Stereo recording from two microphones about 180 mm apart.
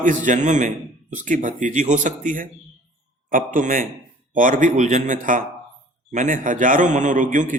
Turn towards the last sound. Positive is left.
turn(degrees=-45)  # may be behind; listen again after turning